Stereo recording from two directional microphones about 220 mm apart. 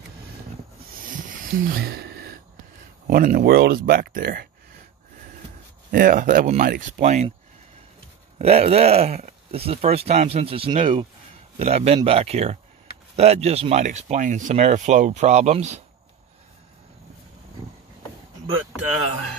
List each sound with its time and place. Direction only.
0.9 s a sound: 40° right (ahead or behind)
3.1 s speech: 40° right (ahead or behind)
5.9 s speech: 40° right (ahead or behind)
8.4 s speech: 30° right (ahead or behind)